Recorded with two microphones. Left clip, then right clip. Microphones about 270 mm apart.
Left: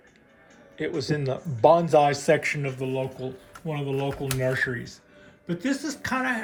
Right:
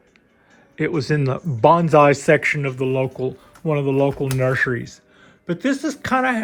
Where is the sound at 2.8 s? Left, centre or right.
Right.